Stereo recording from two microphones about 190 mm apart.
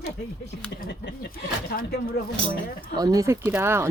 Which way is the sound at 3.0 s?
20° right (ahead or behind).